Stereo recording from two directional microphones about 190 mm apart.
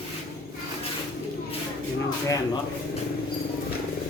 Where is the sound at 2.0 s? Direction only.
20° left (ahead or behind).